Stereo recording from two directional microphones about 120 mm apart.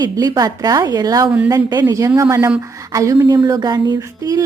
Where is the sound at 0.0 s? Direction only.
35° right (ahead or behind).